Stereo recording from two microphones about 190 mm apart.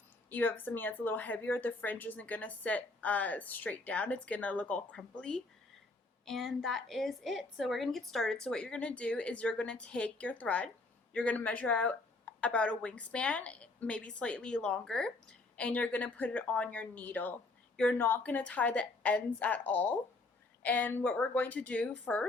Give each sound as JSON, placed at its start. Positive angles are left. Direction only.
{"t": 0.3, "sound": "a woman's voice", "side_deg": 10}